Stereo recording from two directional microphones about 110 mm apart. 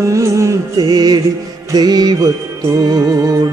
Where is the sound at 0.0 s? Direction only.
25° right (ahead or behind).